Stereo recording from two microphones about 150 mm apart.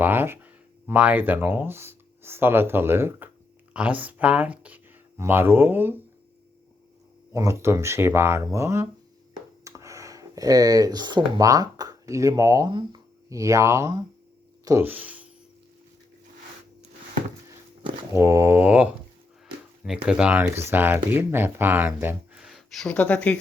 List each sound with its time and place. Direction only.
0.0 s speech: 15° right (ahead or behind)
7.3 s speech: 20° right (ahead or behind)
18.1 s speech: 20° right (ahead or behind); by 23.4 s 10° left (ahead or behind)